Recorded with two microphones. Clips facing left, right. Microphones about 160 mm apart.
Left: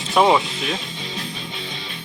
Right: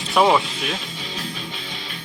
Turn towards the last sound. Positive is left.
turn(degrees=0)  # may be behind; listen again after turning